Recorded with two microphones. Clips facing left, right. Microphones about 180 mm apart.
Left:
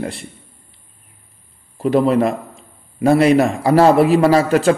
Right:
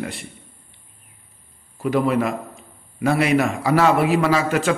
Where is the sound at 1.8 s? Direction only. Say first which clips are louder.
Left 5 dB; 35° left (ahead or behind).